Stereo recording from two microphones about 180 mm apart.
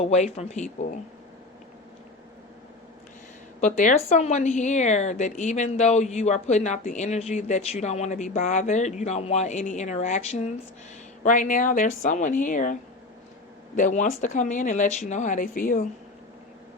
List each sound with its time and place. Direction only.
0.0 s a woman's voice: 40° left (ahead or behind)
3.6 s a woman's voice: 45° left (ahead or behind)
13.7 s speech: 45° left (ahead or behind)